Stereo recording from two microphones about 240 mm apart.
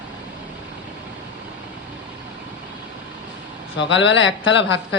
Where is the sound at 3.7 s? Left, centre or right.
Left.